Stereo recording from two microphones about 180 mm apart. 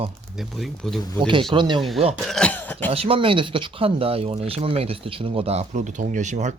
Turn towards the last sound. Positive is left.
turn(degrees=-40)  # may be behind; listen again after turning